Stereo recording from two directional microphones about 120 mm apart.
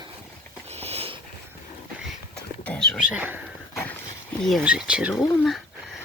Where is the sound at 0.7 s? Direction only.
60° right (ahead or behind).